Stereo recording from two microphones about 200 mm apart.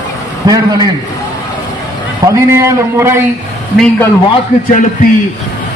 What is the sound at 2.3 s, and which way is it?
A man's voice, 15° right (ahead or behind).